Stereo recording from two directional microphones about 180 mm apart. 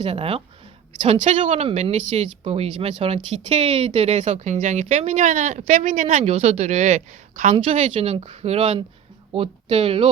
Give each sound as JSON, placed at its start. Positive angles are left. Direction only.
{"t": 0.0, "sound": "speech", "side_deg": -35}